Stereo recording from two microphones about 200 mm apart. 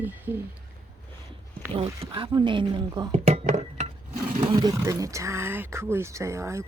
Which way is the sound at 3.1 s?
30° right (ahead or behind).